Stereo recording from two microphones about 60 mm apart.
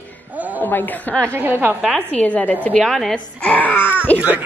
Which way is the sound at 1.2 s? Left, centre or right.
Right.